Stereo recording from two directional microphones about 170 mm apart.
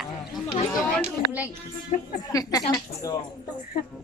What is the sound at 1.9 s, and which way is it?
Speech, 45° left (ahead or behind).